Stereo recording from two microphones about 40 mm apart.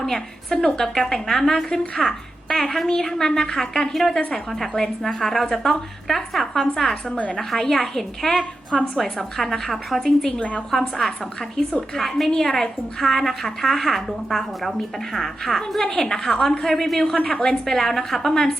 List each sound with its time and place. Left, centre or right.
0.5 s a woman's voice: centre
10.3 s a woman's voice: left
10.7 s a woman's voice: centre